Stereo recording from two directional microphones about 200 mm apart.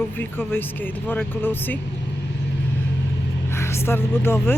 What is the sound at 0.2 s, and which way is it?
Speech, 10° left (ahead or behind).